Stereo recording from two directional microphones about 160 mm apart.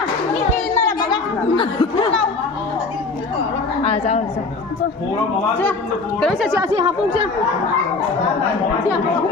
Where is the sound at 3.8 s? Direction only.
40° left (ahead or behind).